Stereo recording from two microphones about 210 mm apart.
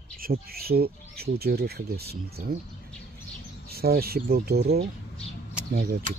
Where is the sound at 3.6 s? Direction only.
45° right (ahead or behind).